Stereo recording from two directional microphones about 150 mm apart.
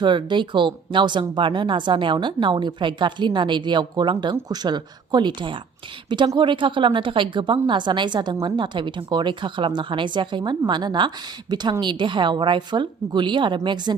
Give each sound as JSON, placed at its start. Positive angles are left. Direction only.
{"t": 0.0, "sound": "a woman's voice", "side_deg": -30}